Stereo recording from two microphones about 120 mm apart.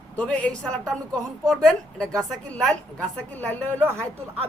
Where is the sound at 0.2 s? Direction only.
10° left (ahead or behind).